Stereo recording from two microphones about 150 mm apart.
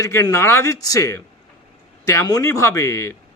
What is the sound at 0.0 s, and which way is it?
A man's voice, 20° left (ahead or behind).